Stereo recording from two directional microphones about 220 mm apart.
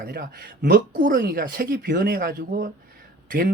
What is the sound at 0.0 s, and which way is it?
Speech, 40° right (ahead or behind).